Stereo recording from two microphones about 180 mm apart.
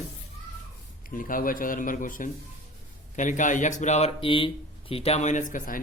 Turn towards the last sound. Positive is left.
turn(degrees=45)  # may be behind; listen again after turning